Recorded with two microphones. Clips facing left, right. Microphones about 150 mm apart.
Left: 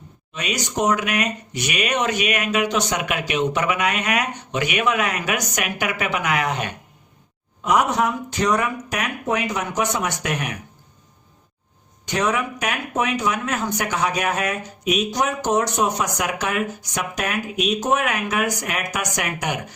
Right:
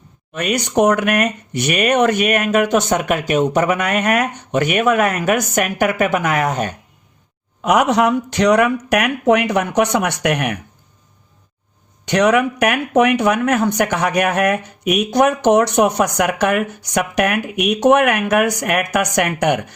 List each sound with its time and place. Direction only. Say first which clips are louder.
0.3 s speech: right 8 dB; 60° right (ahead or behind)
7.6 s speech: right 5 dB; 75° right (ahead or behind)
12.0 s speech: right 8 dB; 70° right (ahead or behind)